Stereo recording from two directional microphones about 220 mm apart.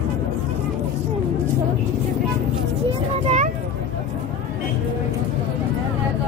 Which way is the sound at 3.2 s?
35° right (ahead or behind).